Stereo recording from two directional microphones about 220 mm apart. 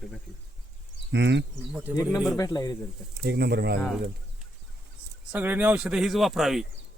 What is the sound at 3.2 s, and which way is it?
Speech, 50° right (ahead or behind).